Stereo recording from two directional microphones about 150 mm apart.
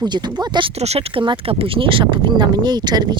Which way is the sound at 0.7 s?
45° right (ahead or behind).